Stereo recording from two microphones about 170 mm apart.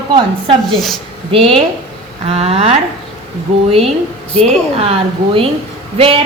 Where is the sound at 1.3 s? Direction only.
35° right (ahead or behind).